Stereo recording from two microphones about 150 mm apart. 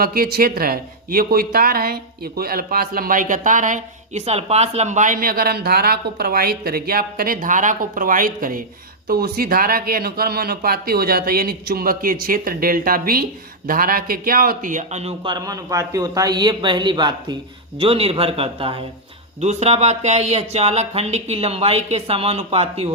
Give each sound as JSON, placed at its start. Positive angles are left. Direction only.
{"t": 0.0, "sound": "speech", "side_deg": -80}
{"t": 9.0, "sound": "speech", "side_deg": -85}
{"t": 15.2, "sound": "a man's voice", "side_deg": -30}